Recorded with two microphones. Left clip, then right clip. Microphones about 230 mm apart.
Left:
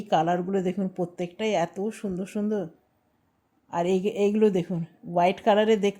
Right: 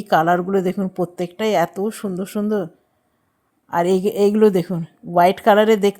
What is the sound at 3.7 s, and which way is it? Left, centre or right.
A woman's voice, right.